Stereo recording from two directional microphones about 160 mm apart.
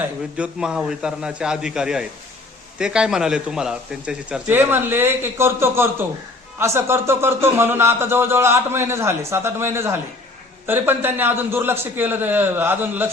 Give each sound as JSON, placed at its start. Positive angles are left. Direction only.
{"t": 0.3, "sound": "a man's voice", "side_deg": -5}